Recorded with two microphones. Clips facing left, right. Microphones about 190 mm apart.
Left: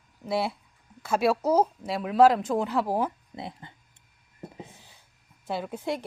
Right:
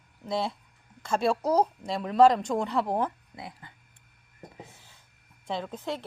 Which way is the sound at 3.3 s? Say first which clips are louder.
Left 4 dB; 25° left (ahead or behind).